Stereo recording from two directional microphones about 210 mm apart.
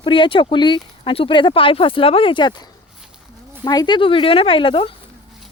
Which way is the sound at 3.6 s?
20° left (ahead or behind).